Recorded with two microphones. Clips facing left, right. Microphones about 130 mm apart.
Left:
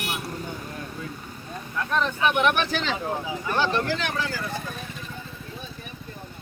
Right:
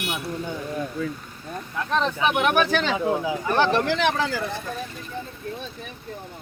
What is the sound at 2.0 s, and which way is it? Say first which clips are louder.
Speech: right 1 dB; 30° right (ahead or behind).